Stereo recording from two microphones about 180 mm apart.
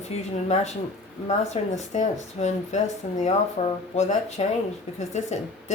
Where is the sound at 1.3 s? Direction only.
40° left (ahead or behind).